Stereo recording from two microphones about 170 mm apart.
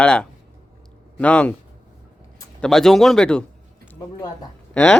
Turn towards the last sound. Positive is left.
turn(degrees=5)  # may be behind; listen again after turning